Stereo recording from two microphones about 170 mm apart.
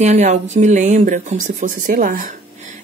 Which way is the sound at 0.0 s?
45° right (ahead or behind).